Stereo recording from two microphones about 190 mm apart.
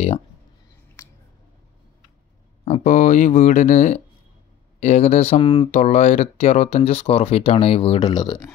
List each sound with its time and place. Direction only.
2.6 s speech: 40° left (ahead or behind)
5.8 s speech: 35° left (ahead or behind); by 8.5 s 20° left (ahead or behind)